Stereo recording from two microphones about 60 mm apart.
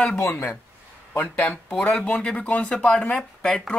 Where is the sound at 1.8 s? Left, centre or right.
Left.